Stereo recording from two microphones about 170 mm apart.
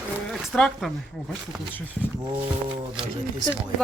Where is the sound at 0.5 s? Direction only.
Centre (ahead or behind).